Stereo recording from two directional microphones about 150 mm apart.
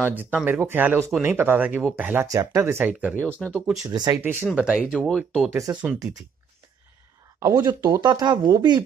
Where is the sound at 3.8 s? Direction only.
25° right (ahead or behind).